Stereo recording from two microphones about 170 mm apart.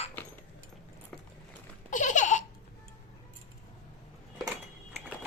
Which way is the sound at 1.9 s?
45° left (ahead or behind).